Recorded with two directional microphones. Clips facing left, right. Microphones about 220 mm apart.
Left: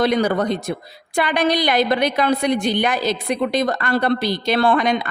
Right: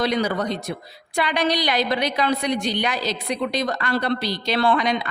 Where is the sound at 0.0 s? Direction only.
50° left (ahead or behind).